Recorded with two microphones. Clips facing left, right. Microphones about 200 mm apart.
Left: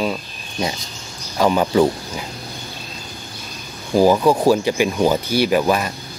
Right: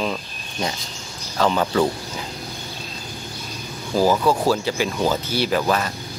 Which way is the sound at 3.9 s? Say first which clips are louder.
Left 4 dB; 15° left (ahead or behind).